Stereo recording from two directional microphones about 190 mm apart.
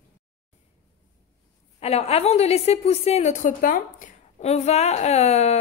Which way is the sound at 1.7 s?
35° left (ahead or behind).